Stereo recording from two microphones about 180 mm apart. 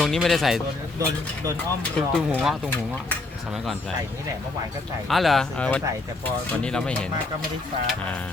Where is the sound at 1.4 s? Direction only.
20° right (ahead or behind).